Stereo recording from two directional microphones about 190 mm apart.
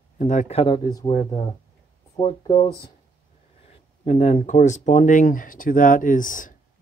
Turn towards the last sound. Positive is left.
turn(degrees=45)  # may be behind; listen again after turning